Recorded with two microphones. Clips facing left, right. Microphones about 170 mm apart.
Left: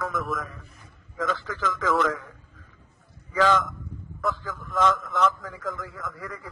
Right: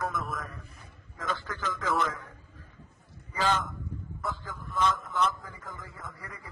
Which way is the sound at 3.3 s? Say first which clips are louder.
Left 7 dB; 90° left.